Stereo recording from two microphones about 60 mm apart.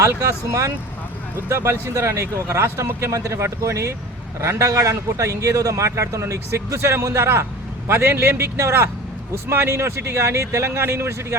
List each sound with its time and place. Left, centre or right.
1.5 s a man's voice: right